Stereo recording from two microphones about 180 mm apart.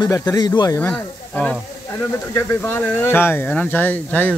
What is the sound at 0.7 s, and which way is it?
Speech, 10° left (ahead or behind).